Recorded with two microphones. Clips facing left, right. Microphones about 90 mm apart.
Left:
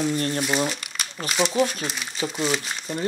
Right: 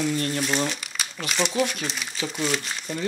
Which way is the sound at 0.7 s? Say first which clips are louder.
Even; centre (ahead or behind).